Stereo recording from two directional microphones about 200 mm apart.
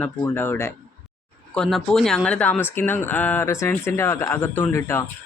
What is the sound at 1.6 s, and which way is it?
Speech, centre (ahead or behind).